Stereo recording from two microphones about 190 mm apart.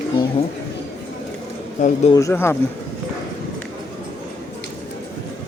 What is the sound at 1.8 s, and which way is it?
Speech, 40° left (ahead or behind).